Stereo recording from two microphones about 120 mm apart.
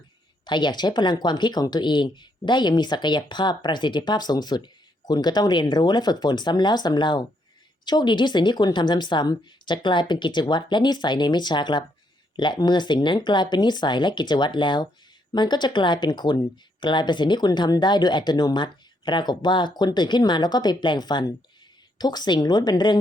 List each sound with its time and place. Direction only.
0.4 s speech: 40° left (ahead or behind)